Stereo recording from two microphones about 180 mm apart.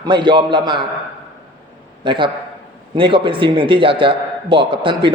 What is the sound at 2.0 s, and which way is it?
A man's voice, 25° right (ahead or behind).